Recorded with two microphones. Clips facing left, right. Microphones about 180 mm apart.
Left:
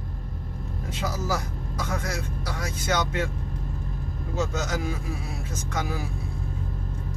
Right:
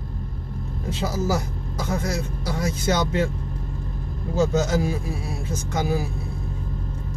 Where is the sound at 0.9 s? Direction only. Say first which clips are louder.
Right 5 dB; 25° right (ahead or behind).